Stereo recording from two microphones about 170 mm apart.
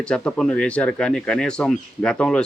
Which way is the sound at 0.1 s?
5° left (ahead or behind).